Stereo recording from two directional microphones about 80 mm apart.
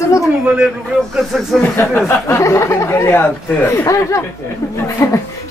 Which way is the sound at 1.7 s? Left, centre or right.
Left.